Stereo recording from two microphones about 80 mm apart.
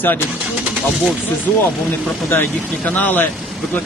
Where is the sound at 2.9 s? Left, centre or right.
Left.